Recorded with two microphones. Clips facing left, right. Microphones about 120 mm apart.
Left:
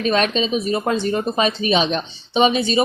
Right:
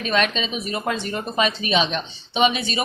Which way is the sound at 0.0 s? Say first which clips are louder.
Left 4 dB; 35° left (ahead or behind).